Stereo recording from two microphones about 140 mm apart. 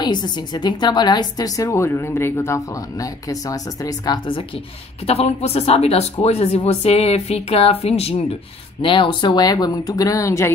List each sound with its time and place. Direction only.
0.0 s a woman's voice: 30° left (ahead or behind)
5.0 s speech: 45° left (ahead or behind)
8.8 s a woman's voice: 35° left (ahead or behind); by 10.5 s 20° left (ahead or behind)